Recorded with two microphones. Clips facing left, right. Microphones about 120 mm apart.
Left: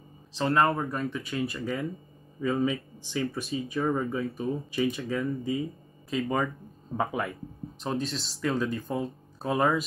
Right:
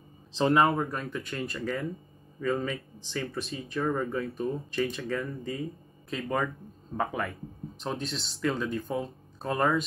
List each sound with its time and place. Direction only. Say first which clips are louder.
0.4 s speech: right 1 dB; 20° right (ahead or behind)
0.7 s speech: even; centre (ahead or behind)